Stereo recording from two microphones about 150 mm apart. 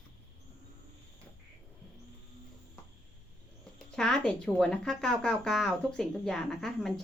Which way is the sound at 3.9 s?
5° left (ahead or behind).